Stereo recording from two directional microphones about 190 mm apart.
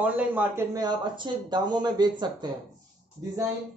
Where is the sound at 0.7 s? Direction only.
20° right (ahead or behind).